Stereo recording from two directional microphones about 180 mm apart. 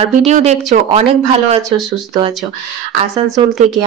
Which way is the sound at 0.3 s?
40° right (ahead or behind).